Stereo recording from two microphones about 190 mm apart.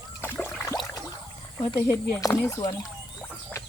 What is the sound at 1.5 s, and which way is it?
Speech, 20° left (ahead or behind).